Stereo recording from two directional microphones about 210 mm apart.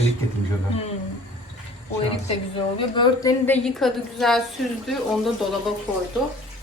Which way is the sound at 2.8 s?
20° left (ahead or behind).